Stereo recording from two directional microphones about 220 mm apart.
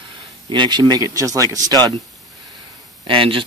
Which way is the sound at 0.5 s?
20° right (ahead or behind).